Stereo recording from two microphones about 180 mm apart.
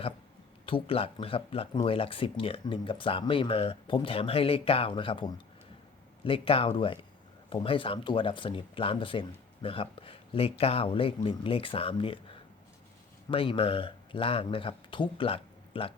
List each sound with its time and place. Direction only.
0.6 s speech: 30° left (ahead or behind)